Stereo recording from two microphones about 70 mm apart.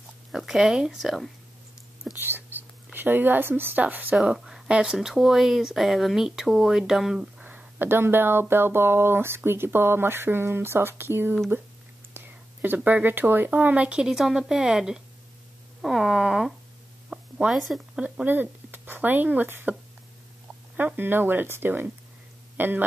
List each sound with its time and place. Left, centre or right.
0.3 s speech: centre
2.1 s speech: right
4.1 s speech: centre
7.4 s speech: right
12.6 s speech: right; by 16.5 s centre
17.1 s a sound: centre
17.6 s speech: centre
18.0 s speech: right
20.7 s speech: right